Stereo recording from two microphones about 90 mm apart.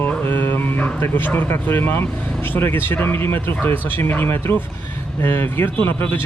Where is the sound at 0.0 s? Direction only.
25° left (ahead or behind).